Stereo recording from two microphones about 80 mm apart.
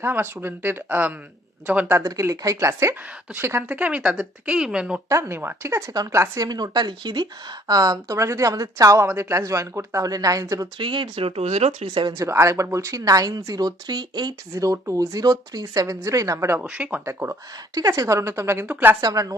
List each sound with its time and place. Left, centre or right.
0.0 s speech: right
1.9 s speech: right
3.7 s speech: centre
5.0 s speech: right
6.5 s speech: right
10.8 s speech: right
12.1 s speech: right
14.5 s speech: right
16.6 s speech: centre
17.1 s speech: right
17.7 s speech: right
18.6 s speech: right
19.0 s speech: right